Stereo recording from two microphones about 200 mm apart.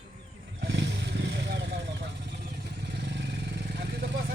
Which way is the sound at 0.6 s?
60° right (ahead or behind).